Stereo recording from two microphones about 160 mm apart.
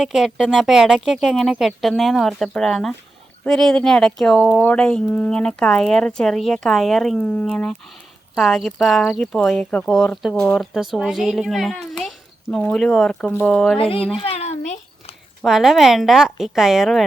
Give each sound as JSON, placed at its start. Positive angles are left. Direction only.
{"t": 0.0, "sound": "speech", "side_deg": 0}
{"t": 13.7, "sound": "speech", "side_deg": 35}
{"t": 14.2, "sound": "a sound", "side_deg": 40}
{"t": 15.4, "sound": "speech", "side_deg": 0}